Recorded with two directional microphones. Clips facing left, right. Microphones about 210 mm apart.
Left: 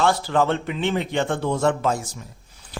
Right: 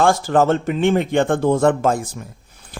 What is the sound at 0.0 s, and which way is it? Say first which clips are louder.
A man's voice: right 5 dB; 45° right (ahead or behind).